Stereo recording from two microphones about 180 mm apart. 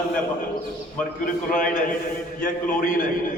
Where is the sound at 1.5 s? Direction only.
45° left (ahead or behind).